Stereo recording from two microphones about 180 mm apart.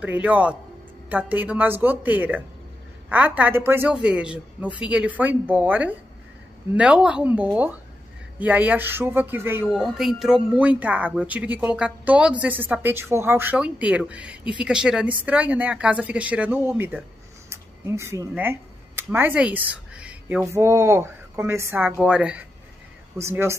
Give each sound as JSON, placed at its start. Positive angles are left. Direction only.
{"t": 0.0, "sound": "a woman's voice", "side_deg": -10}